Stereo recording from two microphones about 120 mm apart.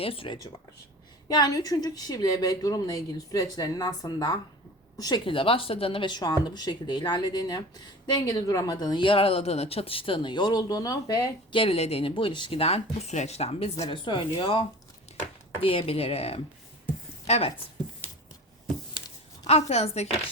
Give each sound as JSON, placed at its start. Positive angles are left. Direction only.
{"t": 0.0, "sound": "speech", "side_deg": 50}
{"t": 1.3, "sound": "a woman's voice", "side_deg": 35}
{"t": 5.2, "sound": "speech", "side_deg": 50}
{"t": 11.5, "sound": "speech", "side_deg": 50}
{"t": 13.9, "sound": "speech", "side_deg": 45}
{"t": 15.6, "sound": "speech", "side_deg": 50}
{"t": 19.5, "sound": "speech", "side_deg": 60}